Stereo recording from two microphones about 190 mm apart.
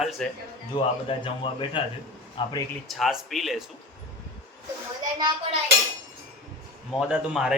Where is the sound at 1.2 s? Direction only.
25° left (ahead or behind).